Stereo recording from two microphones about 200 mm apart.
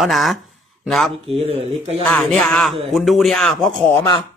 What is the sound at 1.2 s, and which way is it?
Speech, 30° right (ahead or behind).